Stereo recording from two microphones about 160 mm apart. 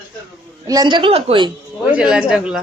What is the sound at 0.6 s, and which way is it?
Speech, 25° right (ahead or behind).